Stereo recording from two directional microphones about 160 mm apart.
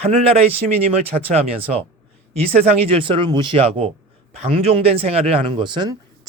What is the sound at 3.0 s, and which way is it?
Speech, 30° right (ahead or behind).